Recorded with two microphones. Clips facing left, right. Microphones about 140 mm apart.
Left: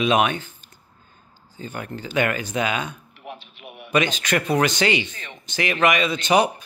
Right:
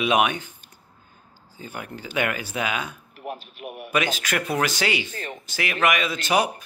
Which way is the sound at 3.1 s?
45° right (ahead or behind).